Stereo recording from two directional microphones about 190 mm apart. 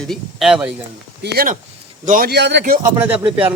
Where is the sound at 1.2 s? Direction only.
55° right (ahead or behind).